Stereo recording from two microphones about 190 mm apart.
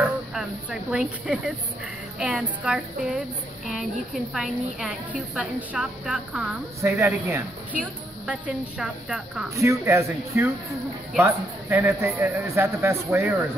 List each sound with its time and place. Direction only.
0.3 s a woman's voice: 5° right (ahead or behind)
9.6 s a man's voice: 15° right (ahead or behind)